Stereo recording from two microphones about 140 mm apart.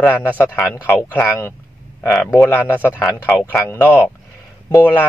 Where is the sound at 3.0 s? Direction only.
Centre (ahead or behind).